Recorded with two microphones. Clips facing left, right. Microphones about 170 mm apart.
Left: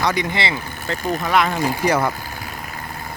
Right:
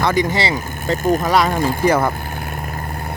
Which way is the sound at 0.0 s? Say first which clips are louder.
Right 4 dB; 45° right (ahead or behind).